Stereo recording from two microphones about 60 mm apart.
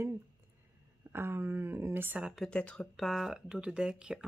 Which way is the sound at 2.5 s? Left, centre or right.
Centre.